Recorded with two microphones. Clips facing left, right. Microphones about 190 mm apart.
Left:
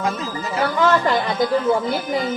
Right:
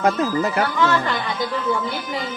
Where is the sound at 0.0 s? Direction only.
60° right (ahead or behind).